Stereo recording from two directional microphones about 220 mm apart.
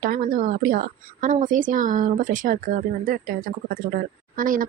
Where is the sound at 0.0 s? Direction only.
40° right (ahead or behind).